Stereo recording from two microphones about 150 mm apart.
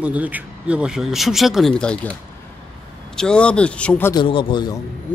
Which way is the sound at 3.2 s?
5° left (ahead or behind).